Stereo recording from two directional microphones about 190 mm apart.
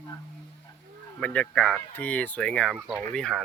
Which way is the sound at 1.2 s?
5° left (ahead or behind).